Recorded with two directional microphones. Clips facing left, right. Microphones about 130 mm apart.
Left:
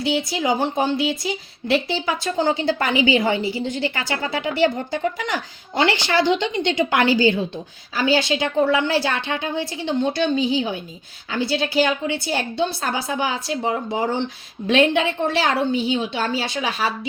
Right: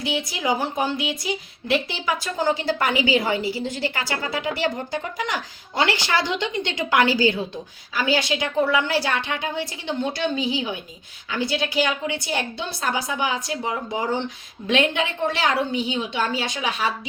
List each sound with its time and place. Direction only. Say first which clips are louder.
0.0 s a woman's voice: left 4 dB; 30° left (ahead or behind)